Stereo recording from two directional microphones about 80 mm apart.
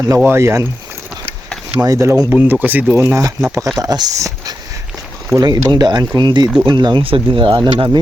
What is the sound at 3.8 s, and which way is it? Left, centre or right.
Speech, right.